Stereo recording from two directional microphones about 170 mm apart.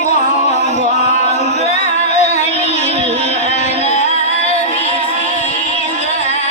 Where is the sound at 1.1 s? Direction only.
40° left (ahead or behind).